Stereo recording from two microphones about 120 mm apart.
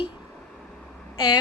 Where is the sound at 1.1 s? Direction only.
40° left (ahead or behind).